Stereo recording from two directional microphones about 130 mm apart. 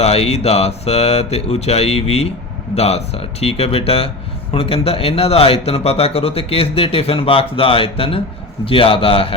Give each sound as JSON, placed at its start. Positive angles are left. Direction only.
{"t": 0.0, "sound": "speech", "side_deg": 50}